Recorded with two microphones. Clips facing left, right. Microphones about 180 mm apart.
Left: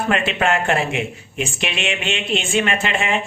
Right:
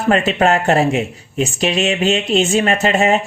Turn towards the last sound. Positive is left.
turn(degrees=-40)  # may be behind; listen again after turning